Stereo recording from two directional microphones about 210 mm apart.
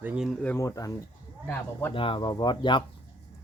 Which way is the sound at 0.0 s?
5° right (ahead or behind).